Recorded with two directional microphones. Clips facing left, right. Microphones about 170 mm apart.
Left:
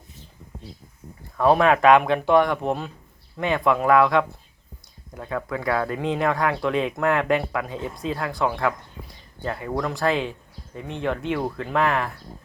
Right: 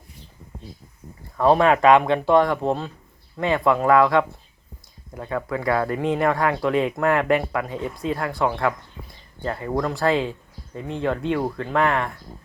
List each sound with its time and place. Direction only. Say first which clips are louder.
1.4 s speech: right 1 dB; centre (ahead or behind)
1.6 s speech: even; 25° right (ahead or behind)
2.0 s speech: right 1 dB; centre (ahead or behind)
10.8 s speech: right 3 dB; 30° right (ahead or behind)
11.5 s speech: right 1 dB; 5° left (ahead or behind)